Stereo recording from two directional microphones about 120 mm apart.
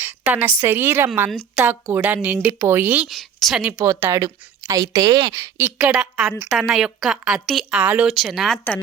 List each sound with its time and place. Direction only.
0.0 s a sound: 15° right (ahead or behind)
0.6 s speech: 15° right (ahead or behind)
3.1 s a woman's voice: centre (ahead or behind)
3.6 s a woman's voice: 15° right (ahead or behind); by 5.3 s 30° right (ahead or behind)
5.5 s a woman's voice: 10° right (ahead or behind)
7.8 s speech: 15° right (ahead or behind)
8.1 s a woman's voice: centre (ahead or behind)